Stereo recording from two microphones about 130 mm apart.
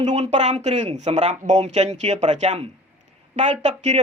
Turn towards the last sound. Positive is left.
turn(degrees=-60)  # may be behind; listen again after turning